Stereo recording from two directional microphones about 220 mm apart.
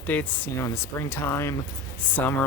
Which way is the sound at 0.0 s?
5° left (ahead or behind).